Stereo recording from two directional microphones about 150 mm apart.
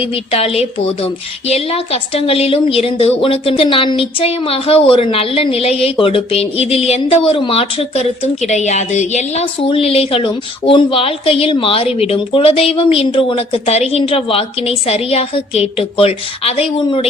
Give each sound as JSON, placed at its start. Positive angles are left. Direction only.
{"t": 0.0, "sound": "a woman's voice", "side_deg": 40}